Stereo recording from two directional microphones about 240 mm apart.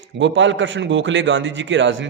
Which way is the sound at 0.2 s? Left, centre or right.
Right.